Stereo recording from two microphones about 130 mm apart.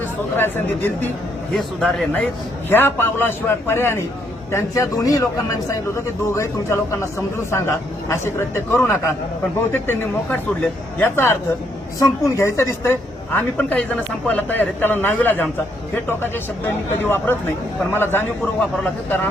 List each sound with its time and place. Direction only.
0.3 s a man's voice: 15° left (ahead or behind)
1.5 s a man's voice: 5° left (ahead or behind)
2.6 s a man's voice: 15° left (ahead or behind)
13.6 s a man's voice: 10° left (ahead or behind)